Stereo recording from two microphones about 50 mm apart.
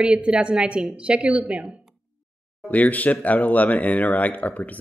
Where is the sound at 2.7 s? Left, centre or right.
Left.